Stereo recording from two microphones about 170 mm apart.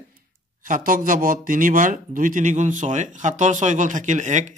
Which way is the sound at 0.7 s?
50° right (ahead or behind).